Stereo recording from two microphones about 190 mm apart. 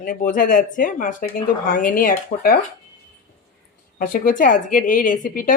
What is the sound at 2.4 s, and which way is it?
Speech, 50° left (ahead or behind).